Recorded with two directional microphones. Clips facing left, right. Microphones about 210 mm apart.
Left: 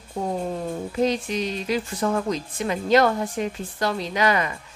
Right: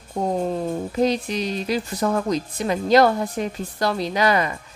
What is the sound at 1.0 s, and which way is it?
Speech, 35° right (ahead or behind).